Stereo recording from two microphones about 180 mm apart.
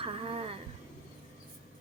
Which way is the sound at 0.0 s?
30° right (ahead or behind).